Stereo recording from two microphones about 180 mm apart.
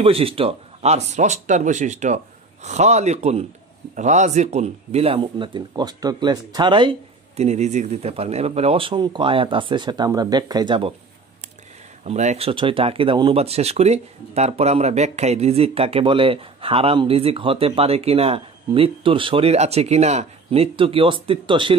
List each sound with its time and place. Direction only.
0.0 s speech: 30° right (ahead or behind)
12.0 s speech: 40° right (ahead or behind)